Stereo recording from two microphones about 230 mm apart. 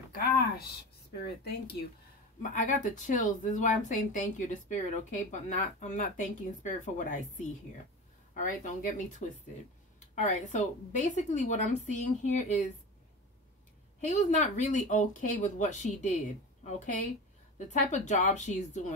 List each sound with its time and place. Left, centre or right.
0.1 s a sound: left
2.5 s speech: left
14.0 s speech: left